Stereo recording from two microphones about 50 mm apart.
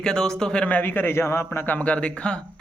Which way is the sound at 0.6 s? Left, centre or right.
Left.